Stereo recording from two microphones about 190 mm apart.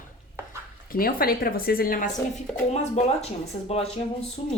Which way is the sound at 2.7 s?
35° left (ahead or behind).